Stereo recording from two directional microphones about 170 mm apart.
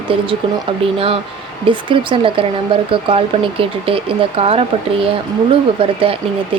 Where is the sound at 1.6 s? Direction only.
30° right (ahead or behind).